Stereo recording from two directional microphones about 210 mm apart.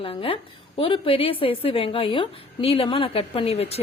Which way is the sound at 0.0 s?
25° left (ahead or behind).